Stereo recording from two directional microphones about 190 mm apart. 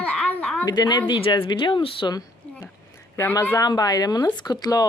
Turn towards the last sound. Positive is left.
turn(degrees=20)  # may be behind; listen again after turning